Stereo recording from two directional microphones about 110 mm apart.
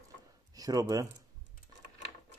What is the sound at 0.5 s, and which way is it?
Speech, 35° right (ahead or behind).